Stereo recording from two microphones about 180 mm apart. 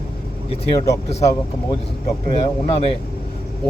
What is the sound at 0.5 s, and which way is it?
Speech, 30° left (ahead or behind).